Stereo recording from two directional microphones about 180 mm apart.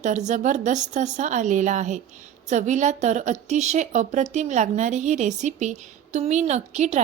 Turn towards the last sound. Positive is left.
turn(degrees=-40)  # may be behind; listen again after turning